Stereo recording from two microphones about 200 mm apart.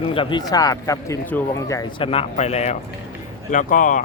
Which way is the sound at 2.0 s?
30° left (ahead or behind).